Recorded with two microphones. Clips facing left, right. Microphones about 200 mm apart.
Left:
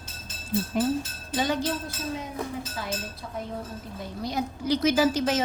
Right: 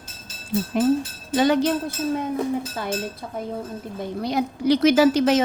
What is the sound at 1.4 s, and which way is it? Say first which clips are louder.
Speech: right 8 dB; 70° right (ahead or behind).